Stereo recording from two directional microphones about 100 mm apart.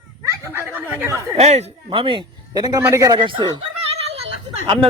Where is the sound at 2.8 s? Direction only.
30° right (ahead or behind).